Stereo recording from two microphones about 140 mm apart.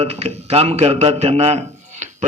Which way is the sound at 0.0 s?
45° right (ahead or behind).